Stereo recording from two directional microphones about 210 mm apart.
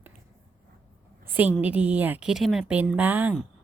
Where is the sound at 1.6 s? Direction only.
5° right (ahead or behind).